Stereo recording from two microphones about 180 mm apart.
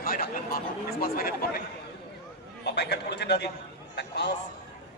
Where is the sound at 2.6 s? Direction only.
70° left (ahead or behind).